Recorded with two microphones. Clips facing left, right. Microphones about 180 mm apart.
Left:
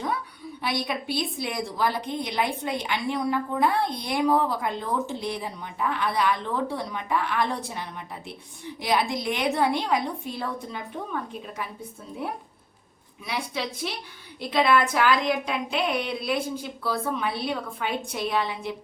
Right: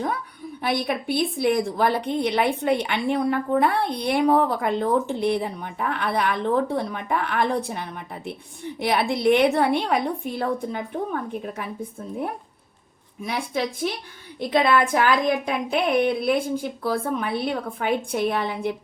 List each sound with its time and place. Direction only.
0.6 s a woman's voice: 55° right (ahead or behind)
13.2 s a woman's voice: 50° right (ahead or behind)